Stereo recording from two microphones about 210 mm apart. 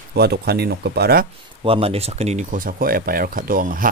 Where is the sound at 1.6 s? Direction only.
25° right (ahead or behind).